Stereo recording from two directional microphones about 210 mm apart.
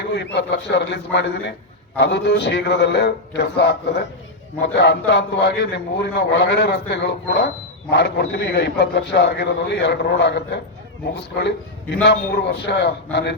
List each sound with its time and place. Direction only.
0.3 s a man's voice: 55° left (ahead or behind)
12.0 s a man's voice: 50° left (ahead or behind)